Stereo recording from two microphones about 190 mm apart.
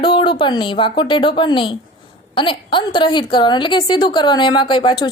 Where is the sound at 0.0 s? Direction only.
25° left (ahead or behind).